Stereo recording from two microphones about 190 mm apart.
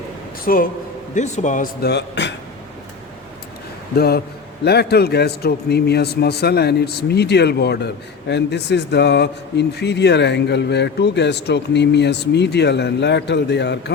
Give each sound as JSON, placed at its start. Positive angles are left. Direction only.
{"t": 0.4, "sound": "a man's voice", "side_deg": 50}
{"t": 1.8, "sound": "a man's voice", "side_deg": 65}
{"t": 3.9, "sound": "a man's voice", "side_deg": 55}